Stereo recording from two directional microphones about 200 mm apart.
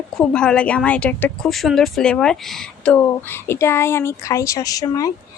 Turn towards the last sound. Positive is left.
turn(degrees=15)  # may be behind; listen again after turning